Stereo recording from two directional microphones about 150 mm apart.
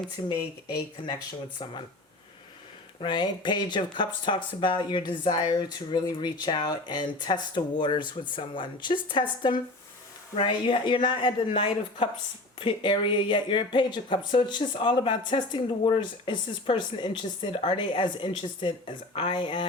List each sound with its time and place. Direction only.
0.2 s speech: 30° left (ahead or behind)
3.0 s speech: 30° left (ahead or behind)